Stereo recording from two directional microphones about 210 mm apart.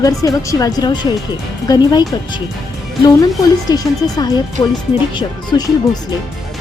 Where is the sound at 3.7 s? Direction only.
20° left (ahead or behind).